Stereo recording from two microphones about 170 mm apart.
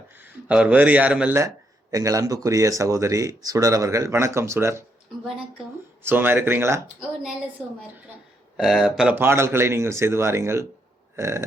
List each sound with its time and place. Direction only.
0.4 s a man's voice: 5° right (ahead or behind)
6.0 s a man's voice: 10° right (ahead or behind)
8.5 s a man's voice: 5° right (ahead or behind)